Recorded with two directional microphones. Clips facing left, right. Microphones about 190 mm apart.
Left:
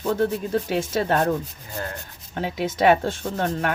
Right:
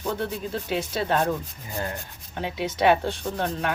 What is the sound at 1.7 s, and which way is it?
Rub, 20° right (ahead or behind).